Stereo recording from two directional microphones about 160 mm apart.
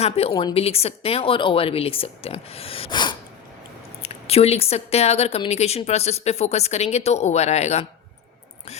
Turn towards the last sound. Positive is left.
turn(degrees=45)  # may be behind; listen again after turning